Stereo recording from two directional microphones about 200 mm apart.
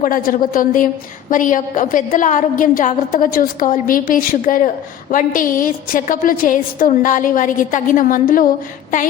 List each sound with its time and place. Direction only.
0.0 s a woman's voice: 45° left (ahead or behind)